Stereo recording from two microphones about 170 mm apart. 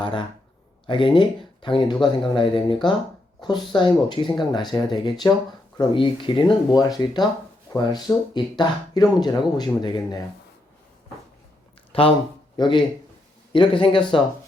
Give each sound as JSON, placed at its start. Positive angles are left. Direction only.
{"t": 0.0, "sound": "speech", "side_deg": 30}
{"t": 11.9, "sound": "a sound", "side_deg": 35}
{"t": 12.5, "sound": "speech", "side_deg": 30}